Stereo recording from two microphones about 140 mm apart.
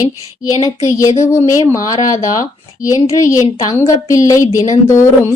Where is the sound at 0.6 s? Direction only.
25° left (ahead or behind).